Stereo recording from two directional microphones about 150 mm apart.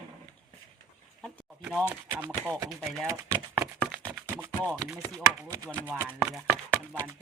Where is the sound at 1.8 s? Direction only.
10° right (ahead or behind).